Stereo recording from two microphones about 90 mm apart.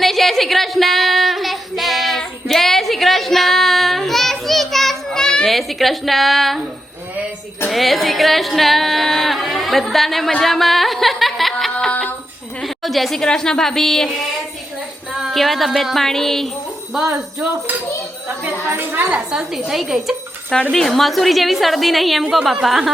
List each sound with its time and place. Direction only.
0.0 s a sound: centre (ahead or behind)
7.7 s female singing: centre (ahead or behind)
11.9 s a sound: 15° left (ahead or behind)
12.6 s a woman's voice: centre (ahead or behind)
15.1 s music: centre (ahead or behind)
18.3 s a woman's voice: 25° right (ahead or behind)
19.3 s a woman's voice: 5° right (ahead or behind)